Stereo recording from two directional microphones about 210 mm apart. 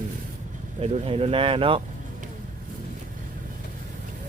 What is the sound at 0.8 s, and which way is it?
Speech, 30° right (ahead or behind).